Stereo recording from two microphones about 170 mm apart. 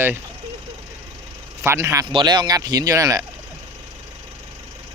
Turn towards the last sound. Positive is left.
turn(degrees=-20)  # may be behind; listen again after turning